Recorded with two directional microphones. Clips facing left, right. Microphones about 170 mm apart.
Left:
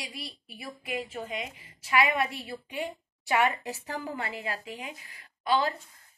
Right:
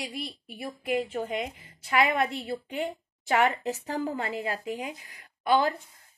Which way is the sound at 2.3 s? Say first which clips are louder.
Right 4 dB; 25° right (ahead or behind).